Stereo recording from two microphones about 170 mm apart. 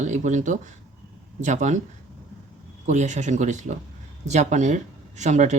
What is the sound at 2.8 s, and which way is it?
Speech, 45° right (ahead or behind).